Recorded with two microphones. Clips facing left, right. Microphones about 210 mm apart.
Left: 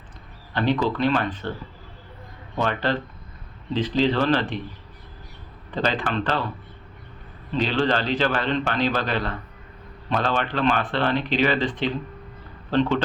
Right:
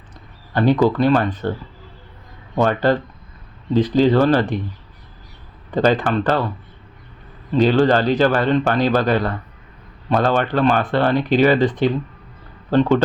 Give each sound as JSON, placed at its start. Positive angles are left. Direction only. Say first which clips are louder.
{"t": 0.5, "sound": "a man's voice", "louder": "right 7 dB", "side_deg": -45}
{"t": 2.6, "sound": "a man's voice", "louder": "right 7 dB", "side_deg": -45}
{"t": 5.7, "sound": "a man's voice", "louder": "right 8 dB", "side_deg": -45}
{"t": 7.5, "sound": "a man's voice", "louder": "right 8 dB", "side_deg": -45}